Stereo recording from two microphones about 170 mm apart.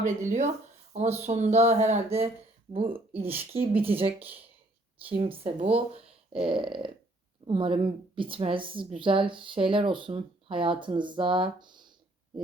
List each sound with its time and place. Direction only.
0.0 s speech: 45° right (ahead or behind)
5.1 s a woman's voice: 35° right (ahead or behind)